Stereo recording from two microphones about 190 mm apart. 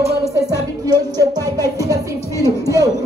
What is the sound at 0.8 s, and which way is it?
Music, 20° right (ahead or behind).